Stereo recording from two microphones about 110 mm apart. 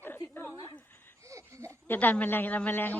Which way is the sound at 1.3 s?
30° right (ahead or behind).